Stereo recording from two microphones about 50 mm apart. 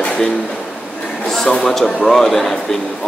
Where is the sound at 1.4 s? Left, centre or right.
Centre.